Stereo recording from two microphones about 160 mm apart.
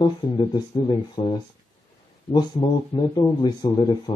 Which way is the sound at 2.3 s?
30° left (ahead or behind).